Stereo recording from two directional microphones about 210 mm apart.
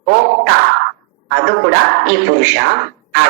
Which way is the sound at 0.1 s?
50° right (ahead or behind).